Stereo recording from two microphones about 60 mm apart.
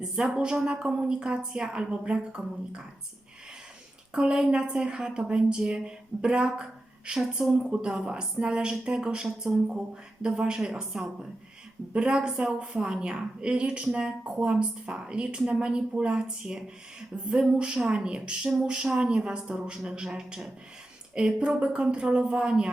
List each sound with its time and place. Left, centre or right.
0.0 s a woman's voice: centre
4.1 s a woman's voice: centre